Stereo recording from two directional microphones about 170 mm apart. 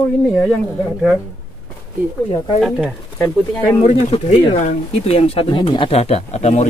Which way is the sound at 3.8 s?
40° left (ahead or behind).